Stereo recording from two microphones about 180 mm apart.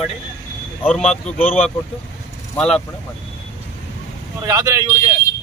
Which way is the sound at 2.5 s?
5° left (ahead or behind).